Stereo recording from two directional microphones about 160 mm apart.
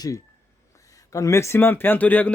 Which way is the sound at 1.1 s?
20° left (ahead or behind).